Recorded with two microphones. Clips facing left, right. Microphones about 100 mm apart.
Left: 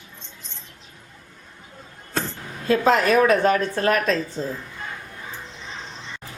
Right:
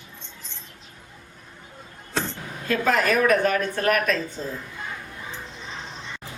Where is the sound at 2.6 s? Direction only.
25° left (ahead or behind).